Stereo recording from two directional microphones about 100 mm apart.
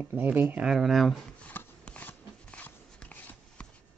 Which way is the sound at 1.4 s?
15° left (ahead or behind).